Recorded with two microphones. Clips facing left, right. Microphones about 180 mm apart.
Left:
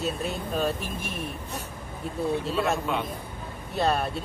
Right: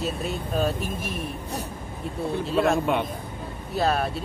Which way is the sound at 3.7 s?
Centre (ahead or behind).